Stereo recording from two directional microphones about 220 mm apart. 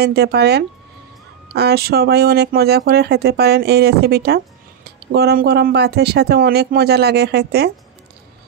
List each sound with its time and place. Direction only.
0.0 s speech: 45° right (ahead or behind)